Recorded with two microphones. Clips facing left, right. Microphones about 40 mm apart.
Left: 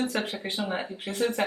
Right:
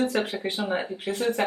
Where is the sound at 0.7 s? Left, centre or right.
Centre.